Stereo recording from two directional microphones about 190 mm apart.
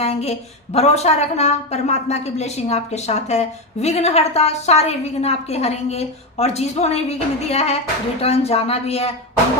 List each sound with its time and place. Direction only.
0.0 s a woman's voice: 35° left (ahead or behind)